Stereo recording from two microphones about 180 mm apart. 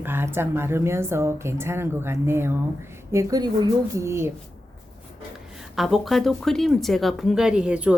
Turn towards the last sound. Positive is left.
turn(degrees=-5)  # may be behind; listen again after turning